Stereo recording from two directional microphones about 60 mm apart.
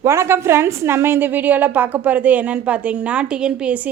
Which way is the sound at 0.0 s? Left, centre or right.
Right.